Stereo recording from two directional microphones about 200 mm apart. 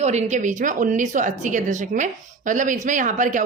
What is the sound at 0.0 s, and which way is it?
A woman's voice, 35° right (ahead or behind).